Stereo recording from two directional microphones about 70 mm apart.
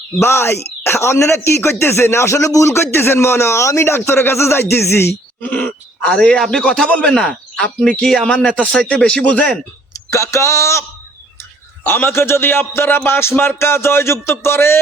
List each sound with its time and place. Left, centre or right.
0.2 s speech: left
5.4 s a man's voice: left
10.1 s a sound: left
11.8 s speech: left